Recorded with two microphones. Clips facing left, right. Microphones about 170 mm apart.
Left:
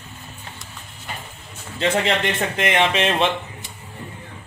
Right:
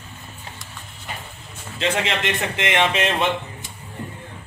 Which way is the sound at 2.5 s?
30° left (ahead or behind).